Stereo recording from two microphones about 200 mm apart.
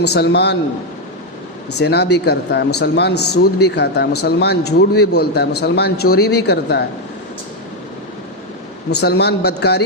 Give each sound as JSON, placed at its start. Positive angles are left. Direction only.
{"t": 0.0, "sound": "speech", "side_deg": 55}
{"t": 1.8, "sound": "speech", "side_deg": 55}
{"t": 8.9, "sound": "speech", "side_deg": 55}